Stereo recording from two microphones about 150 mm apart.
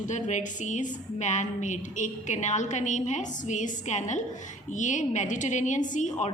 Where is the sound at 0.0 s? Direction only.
50° left (ahead or behind).